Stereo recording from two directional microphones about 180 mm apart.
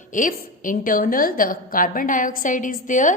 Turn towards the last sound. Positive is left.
turn(degrees=45)  # may be behind; listen again after turning